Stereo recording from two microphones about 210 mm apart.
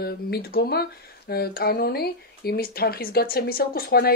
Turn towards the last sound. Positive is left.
turn(degrees=45)  # may be behind; listen again after turning